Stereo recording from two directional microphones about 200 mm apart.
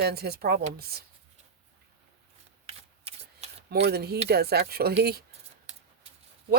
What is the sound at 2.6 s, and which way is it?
Shuffling cards, 30° right (ahead or behind).